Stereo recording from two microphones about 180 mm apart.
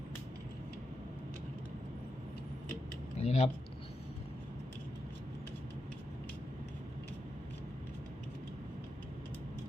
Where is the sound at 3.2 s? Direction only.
35° left (ahead or behind).